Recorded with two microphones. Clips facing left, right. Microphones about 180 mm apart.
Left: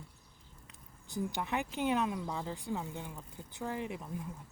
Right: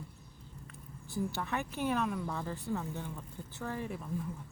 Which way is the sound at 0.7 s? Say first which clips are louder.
Right 1 dB; 15° left (ahead or behind).